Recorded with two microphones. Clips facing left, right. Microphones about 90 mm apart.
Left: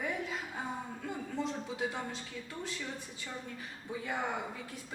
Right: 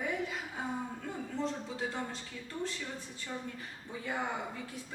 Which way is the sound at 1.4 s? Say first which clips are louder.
Even; 10° left (ahead or behind).